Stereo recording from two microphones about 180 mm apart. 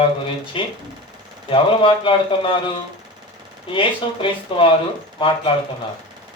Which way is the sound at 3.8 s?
30° left (ahead or behind).